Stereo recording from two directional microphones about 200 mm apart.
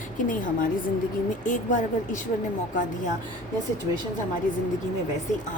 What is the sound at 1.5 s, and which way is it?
Speech, 40° left (ahead or behind).